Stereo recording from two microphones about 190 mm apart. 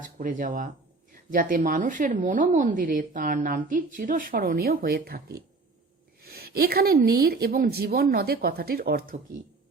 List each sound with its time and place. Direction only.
0.2 s speech: 45° right (ahead or behind)